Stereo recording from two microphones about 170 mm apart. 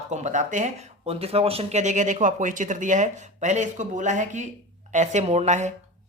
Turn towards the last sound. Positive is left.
turn(degrees=-45)  # may be behind; listen again after turning